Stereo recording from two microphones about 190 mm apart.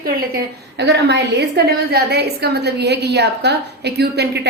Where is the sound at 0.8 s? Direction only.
65° right (ahead or behind).